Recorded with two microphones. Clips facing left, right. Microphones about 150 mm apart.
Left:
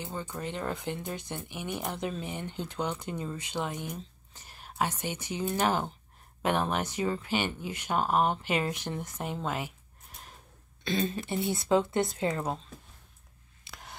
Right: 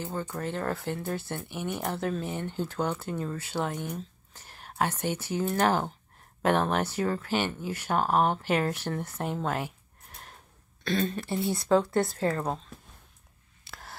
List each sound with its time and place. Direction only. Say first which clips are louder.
0.0 s speech: right 3 dB; 15° left (ahead or behind)
11.0 s speech: right 1 dB; 20° left (ahead or behind)
11.3 s speech: right 2 dB; centre (ahead or behind)
11.8 s speech: right 2 dB; 20° left (ahead or behind)
13.7 s a sound: right 2 dB; 20° left (ahead or behind)